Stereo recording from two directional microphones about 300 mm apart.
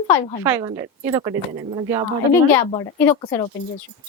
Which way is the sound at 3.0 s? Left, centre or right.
Centre.